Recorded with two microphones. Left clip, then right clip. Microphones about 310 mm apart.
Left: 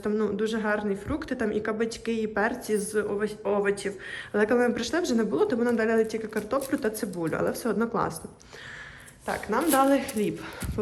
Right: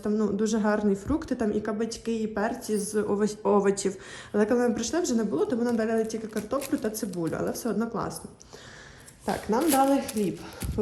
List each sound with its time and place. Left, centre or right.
0.0 s speech: centre
9.2 s speech: centre